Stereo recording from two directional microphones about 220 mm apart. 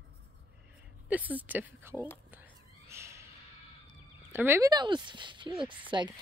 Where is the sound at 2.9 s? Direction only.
10° right (ahead or behind).